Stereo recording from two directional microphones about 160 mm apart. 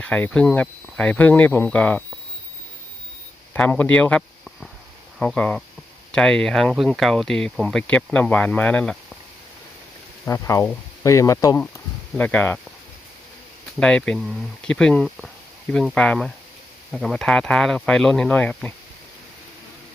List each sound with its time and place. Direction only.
0.0 s speech: 10° left (ahead or behind)
3.5 s speech: 10° left (ahead or behind)
10.2 s speech: 20° left (ahead or behind)
12.1 s speech: 10° left (ahead or behind)
13.7 s speech: 5° left (ahead or behind)